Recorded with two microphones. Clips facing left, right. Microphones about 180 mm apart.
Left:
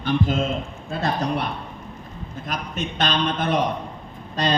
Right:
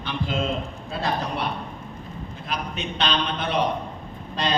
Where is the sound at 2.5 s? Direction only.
45° left (ahead or behind).